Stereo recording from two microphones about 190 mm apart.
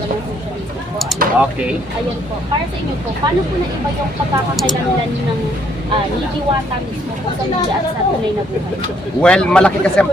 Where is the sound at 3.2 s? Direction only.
25° right (ahead or behind).